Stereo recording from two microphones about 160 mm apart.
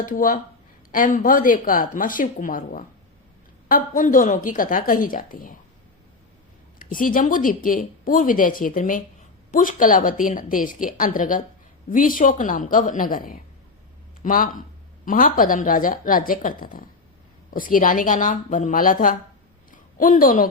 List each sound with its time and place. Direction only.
0.0 s speech: 60° left (ahead or behind)
6.7 s speech: 60° left (ahead or behind)